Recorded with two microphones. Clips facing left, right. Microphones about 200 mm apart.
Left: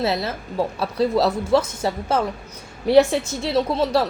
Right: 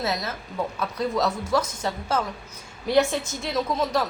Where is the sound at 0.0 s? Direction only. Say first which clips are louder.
Left 5 dB; 30° left (ahead or behind).